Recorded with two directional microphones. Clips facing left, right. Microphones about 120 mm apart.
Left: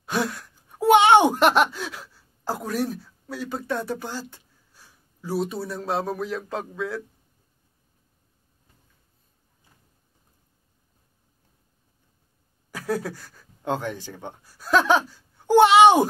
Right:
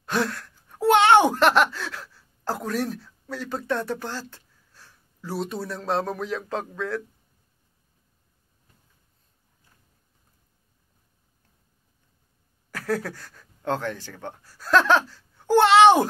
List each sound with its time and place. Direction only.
0.0 s speech: 10° left (ahead or behind)
12.7 s speech: 15° left (ahead or behind)